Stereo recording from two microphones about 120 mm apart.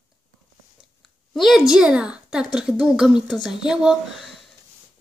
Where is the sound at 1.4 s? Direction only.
Centre (ahead or behind).